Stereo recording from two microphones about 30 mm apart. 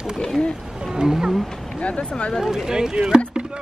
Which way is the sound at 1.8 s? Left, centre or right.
Left.